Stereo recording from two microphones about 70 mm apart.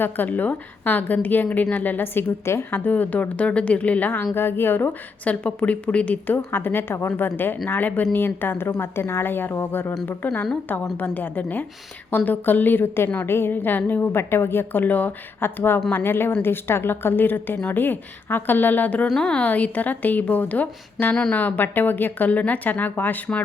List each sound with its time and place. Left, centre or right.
0.0 s a woman's voice: left
19.0 s a woman's voice: centre
19.5 s speech: left